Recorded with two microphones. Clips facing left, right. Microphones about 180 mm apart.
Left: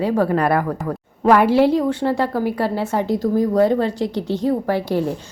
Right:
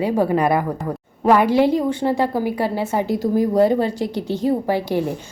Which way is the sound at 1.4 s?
5° left (ahead or behind).